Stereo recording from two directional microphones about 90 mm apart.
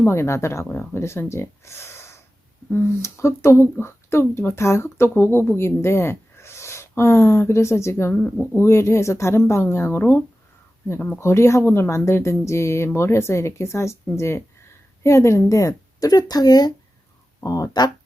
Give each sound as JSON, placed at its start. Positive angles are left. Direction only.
{"t": 0.0, "sound": "speech", "side_deg": 30}
{"t": 11.2, "sound": "speech", "side_deg": 30}